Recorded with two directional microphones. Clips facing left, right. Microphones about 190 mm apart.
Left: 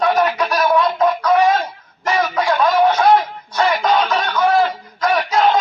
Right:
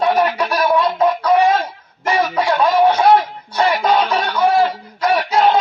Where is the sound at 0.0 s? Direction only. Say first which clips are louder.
Even; 10° right (ahead or behind).